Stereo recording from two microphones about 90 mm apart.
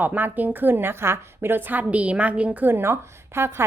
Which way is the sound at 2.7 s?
30° right (ahead or behind).